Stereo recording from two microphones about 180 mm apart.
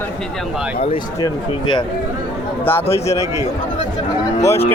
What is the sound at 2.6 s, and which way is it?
Speech, 15° left (ahead or behind).